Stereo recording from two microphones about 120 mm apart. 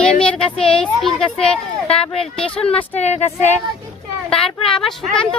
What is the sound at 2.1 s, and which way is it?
Speech, 55° left (ahead or behind).